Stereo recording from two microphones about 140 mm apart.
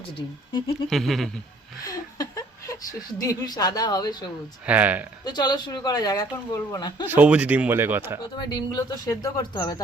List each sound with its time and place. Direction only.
0.9 s goat: centre (ahead or behind)
1.8 s a sound: 25° left (ahead or behind)
3.2 s speech: 30° left (ahead or behind)
4.6 s speech: 10° right (ahead or behind)
5.2 s speech: 30° left (ahead or behind)
7.1 s speech: 10° right (ahead or behind)
8.4 s speech: 35° left (ahead or behind)